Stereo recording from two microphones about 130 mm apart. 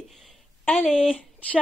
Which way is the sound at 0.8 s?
5° right (ahead or behind).